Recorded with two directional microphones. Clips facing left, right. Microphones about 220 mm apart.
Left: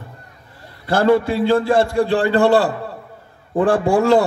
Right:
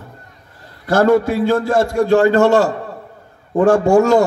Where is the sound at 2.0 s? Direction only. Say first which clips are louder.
Right 3 dB; 45° right (ahead or behind).